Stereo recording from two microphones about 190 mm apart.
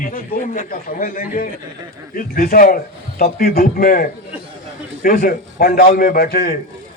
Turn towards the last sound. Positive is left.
turn(degrees=55)  # may be behind; listen again after turning